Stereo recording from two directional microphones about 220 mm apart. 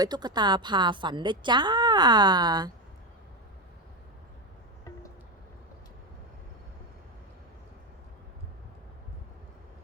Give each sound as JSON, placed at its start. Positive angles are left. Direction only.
{"t": 0.0, "sound": "a woman's voice", "side_deg": -20}